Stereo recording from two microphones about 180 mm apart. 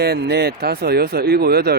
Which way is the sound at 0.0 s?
65° right (ahead or behind).